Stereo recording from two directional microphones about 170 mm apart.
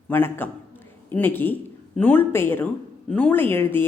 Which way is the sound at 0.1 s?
10° left (ahead or behind).